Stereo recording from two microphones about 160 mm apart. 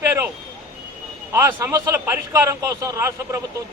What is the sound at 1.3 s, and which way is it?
A man's voice, 20° right (ahead or behind).